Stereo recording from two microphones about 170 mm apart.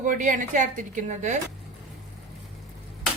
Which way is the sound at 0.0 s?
50° right (ahead or behind).